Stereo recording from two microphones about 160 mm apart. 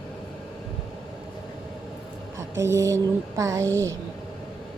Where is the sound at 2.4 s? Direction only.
15° right (ahead or behind).